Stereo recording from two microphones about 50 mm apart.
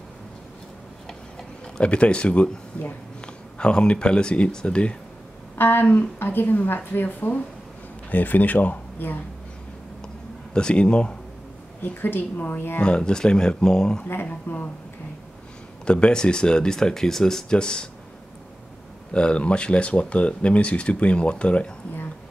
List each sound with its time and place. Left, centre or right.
1.8 s speech: left
5.6 s a woman's voice: left
10.0 s a sound: centre
11.8 s a woman's voice: left
12.8 s speech: centre
14.5 s speech: left
15.8 s speech: centre
19.1 s speech: left